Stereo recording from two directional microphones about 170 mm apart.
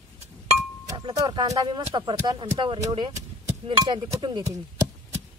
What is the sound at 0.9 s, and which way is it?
Speech, 25° right (ahead or behind).